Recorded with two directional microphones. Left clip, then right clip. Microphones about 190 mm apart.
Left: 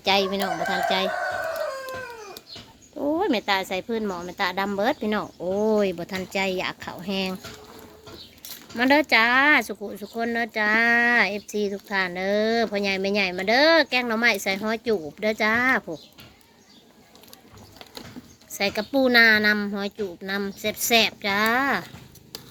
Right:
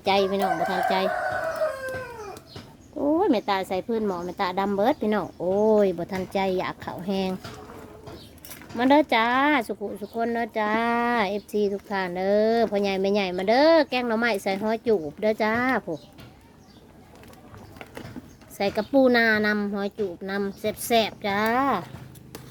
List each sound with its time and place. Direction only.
0.0 s speech: centre (ahead or behind)
3.0 s speech: centre (ahead or behind)
5.4 s speech: 5° left (ahead or behind)
8.7 s speech: centre (ahead or behind)
18.5 s speech: 5° right (ahead or behind)